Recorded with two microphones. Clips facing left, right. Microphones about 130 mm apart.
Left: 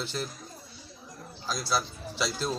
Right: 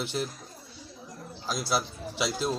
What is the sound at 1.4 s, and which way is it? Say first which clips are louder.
Speech: right 1 dB; 15° right (ahead or behind).